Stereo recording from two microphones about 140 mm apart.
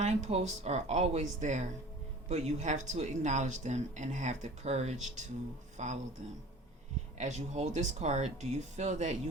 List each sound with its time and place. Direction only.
0.0 s speech: 50° right (ahead or behind)
7.2 s speech: 55° right (ahead or behind)